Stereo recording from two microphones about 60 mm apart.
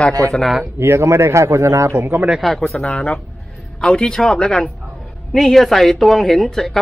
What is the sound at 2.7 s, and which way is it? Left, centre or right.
Speech, centre.